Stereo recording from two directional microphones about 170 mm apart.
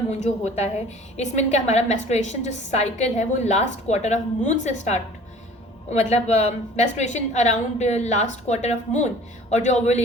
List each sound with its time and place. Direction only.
0.4 s a woman's voice: 40° left (ahead or behind)